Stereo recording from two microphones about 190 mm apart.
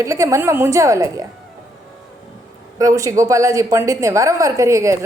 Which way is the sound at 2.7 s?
15° right (ahead or behind).